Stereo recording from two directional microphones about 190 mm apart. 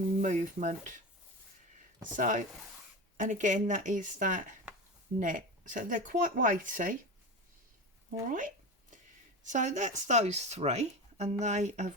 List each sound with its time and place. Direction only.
0.2 s speech: 40° right (ahead or behind)
2.1 s speech: 40° right (ahead or behind)
8.3 s a sound: 45° right (ahead or behind)
9.4 s speech: 40° right (ahead or behind)